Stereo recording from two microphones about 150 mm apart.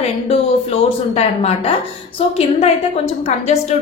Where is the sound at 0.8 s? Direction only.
40° left (ahead or behind).